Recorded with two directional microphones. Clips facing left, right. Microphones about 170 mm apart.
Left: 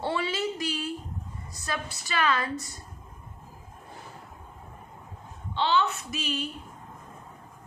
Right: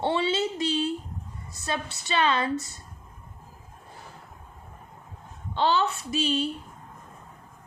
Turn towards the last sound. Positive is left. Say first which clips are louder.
# right 6 dB
turn(degrees=-30)  # may be behind; listen again after turning